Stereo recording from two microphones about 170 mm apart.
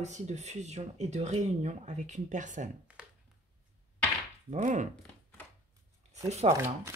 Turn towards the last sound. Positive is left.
turn(degrees=-40)  # may be behind; listen again after turning